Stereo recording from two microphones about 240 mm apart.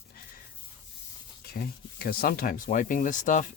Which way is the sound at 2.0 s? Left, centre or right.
Left.